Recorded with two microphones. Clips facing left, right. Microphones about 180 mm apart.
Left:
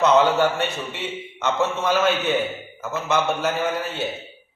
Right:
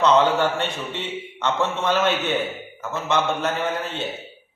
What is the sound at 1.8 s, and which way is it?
Speech, centre (ahead or behind).